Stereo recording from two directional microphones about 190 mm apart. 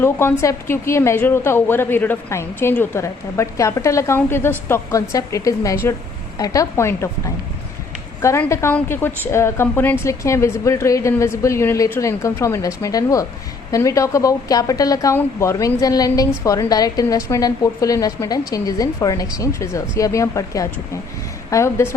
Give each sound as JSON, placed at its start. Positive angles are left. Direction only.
{"t": 0.0, "sound": "a woman's voice", "side_deg": 10}
{"t": 8.2, "sound": "a woman's voice", "side_deg": 15}